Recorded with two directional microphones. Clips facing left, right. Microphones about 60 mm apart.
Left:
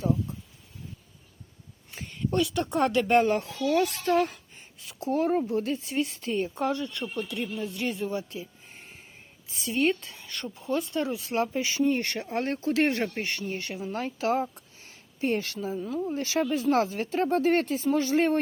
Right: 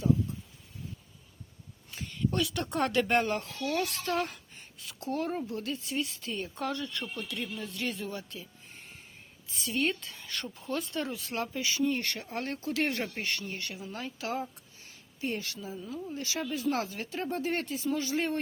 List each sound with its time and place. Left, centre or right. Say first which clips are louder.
2.3 s speech: left 8 dB; centre
3.8 s speech: left 7 dB; left
4.2 s a sound: left 7 dB; centre
5.0 s speech: left 7 dB; left
6.5 s speech: left 5 dB; centre
9.6 s speech: left 5 dB; centre
10.1 s speech: left 2 dB; centre; by 13.1 s left
13.2 s speech: left 3 dB; left
15.8 s speech: left 7 dB; left
17.2 s speech: left 9 dB; left